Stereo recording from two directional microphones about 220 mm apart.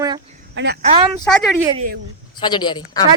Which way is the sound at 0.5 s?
50° right (ahead or behind).